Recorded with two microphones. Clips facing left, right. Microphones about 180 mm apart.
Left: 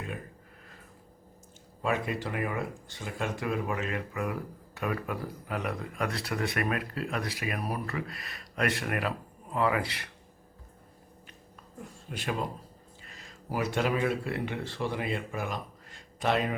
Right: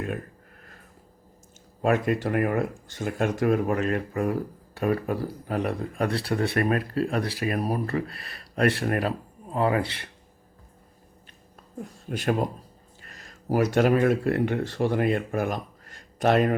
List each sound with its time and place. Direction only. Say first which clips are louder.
1.8 s speech: right 7 dB; 50° right (ahead or behind); by 10.1 s 30° right (ahead or behind)
12.0 s speech: right 8 dB; 45° right (ahead or behind)